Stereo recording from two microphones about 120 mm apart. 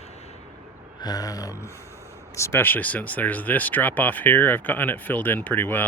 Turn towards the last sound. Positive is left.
turn(degrees=15)  # may be behind; listen again after turning